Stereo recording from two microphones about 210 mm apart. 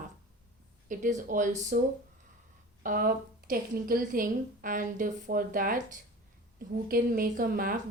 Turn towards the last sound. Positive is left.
turn(degrees=-40)  # may be behind; listen again after turning